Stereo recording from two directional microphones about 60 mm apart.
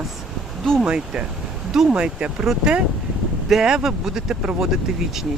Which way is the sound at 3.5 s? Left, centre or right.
Centre.